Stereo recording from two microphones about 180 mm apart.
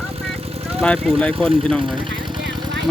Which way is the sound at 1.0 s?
5° left (ahead or behind).